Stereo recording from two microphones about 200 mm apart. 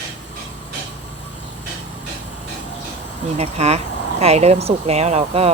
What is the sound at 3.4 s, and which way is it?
Speech, 30° right (ahead or behind).